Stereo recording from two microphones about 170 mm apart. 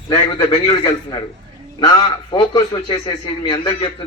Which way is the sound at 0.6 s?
30° left (ahead or behind).